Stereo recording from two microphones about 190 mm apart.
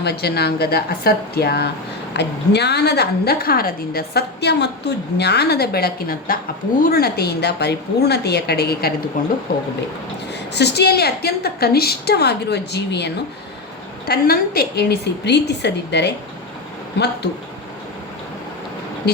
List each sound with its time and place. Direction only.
0.0 s a woman's voice: 60° left (ahead or behind)
10.5 s a woman's voice: 60° left (ahead or behind)
14.1 s a woman's voice: 55° left (ahead or behind)